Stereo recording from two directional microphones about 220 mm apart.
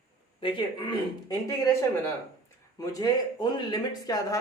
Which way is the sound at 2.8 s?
15° left (ahead or behind).